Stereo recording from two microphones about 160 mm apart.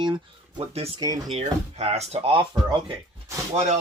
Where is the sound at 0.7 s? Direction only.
40° right (ahead or behind).